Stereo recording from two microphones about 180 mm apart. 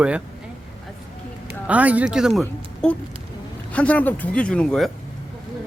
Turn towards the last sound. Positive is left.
turn(degrees=5)  # may be behind; listen again after turning